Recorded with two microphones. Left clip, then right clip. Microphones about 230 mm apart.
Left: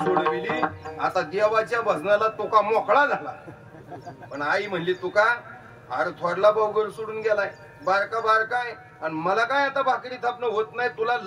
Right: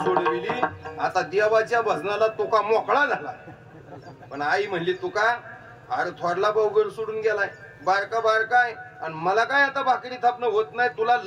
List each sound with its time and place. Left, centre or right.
0.0 s a man's voice: right
4.3 s a man's voice: right